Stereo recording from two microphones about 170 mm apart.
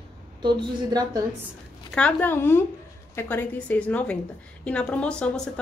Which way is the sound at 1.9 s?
10° left (ahead or behind).